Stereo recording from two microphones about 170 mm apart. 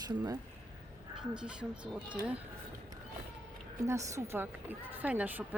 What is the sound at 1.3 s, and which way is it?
Speech, 5° right (ahead or behind).